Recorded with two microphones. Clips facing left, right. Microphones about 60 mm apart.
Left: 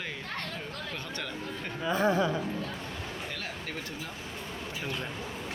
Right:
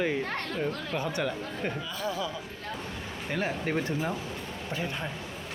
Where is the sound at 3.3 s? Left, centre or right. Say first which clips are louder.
Right 8 dB; right.